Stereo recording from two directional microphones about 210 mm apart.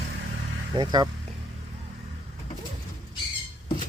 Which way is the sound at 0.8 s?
20° right (ahead or behind).